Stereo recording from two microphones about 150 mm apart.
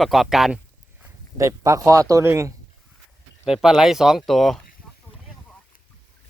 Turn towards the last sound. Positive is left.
turn(degrees=0)  # may be behind; listen again after turning